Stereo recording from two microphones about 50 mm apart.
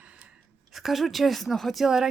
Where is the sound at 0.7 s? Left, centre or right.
Centre.